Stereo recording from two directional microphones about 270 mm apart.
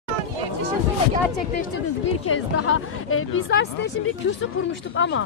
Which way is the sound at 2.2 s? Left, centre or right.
Left.